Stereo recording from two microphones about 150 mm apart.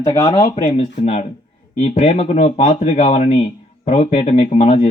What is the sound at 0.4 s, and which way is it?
Speech, 50° left (ahead or behind).